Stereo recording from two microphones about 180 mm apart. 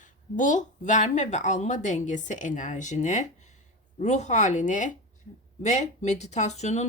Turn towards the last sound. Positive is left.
turn(degrees=40)  # may be behind; listen again after turning